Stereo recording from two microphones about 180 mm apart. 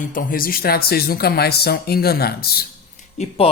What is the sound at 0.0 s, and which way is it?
Speech, 50° left (ahead or behind).